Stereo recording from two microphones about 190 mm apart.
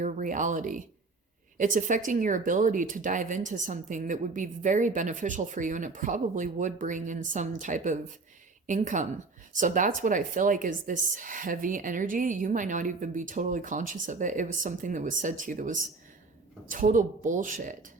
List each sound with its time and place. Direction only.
0.0 s speech: 40° right (ahead or behind)